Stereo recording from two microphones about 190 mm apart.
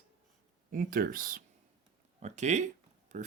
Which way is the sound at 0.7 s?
45° right (ahead or behind).